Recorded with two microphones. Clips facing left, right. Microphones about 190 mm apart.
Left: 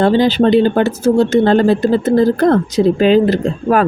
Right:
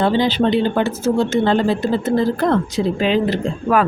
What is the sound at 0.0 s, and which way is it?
Speech, 45° left (ahead or behind).